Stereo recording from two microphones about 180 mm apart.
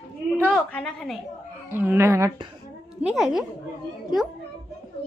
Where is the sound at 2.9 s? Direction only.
5° right (ahead or behind).